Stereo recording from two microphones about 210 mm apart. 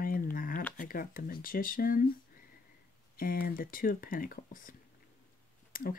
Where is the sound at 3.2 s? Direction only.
45° left (ahead or behind).